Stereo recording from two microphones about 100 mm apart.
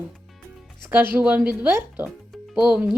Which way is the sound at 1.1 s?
15° right (ahead or behind).